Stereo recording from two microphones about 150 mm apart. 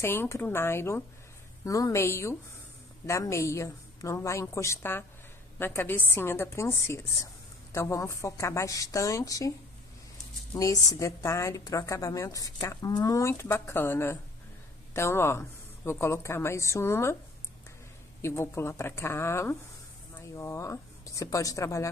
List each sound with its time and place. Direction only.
0.0 s a woman's voice: 15° left (ahead or behind)
10.6 s a woman's voice: 20° left (ahead or behind)
18.2 s a woman's voice: 15° left (ahead or behind)